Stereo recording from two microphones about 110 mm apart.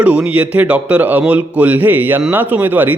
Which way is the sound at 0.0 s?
10° right (ahead or behind).